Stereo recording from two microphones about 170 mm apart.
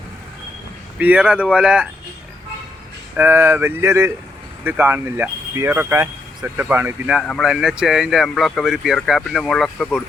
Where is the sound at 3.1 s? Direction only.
15° right (ahead or behind).